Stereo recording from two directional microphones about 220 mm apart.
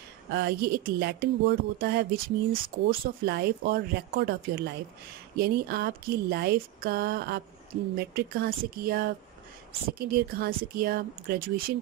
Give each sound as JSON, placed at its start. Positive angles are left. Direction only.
{"t": 0.3, "sound": "speech", "side_deg": -45}